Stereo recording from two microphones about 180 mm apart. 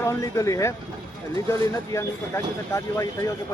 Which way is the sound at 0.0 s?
15° left (ahead or behind).